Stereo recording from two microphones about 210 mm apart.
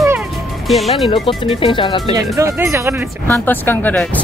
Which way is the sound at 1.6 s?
20° left (ahead or behind).